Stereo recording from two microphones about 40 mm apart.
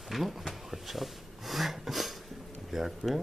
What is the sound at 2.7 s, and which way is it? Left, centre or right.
Speech, centre.